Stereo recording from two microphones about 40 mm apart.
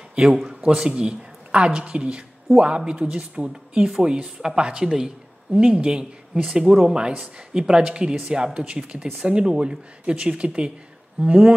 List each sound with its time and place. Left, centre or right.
0.1 s a man's voice: right
2.5 s a woman's voice: centre
2.8 s speech: right
6.3 s speech: right
6.7 s speech: centre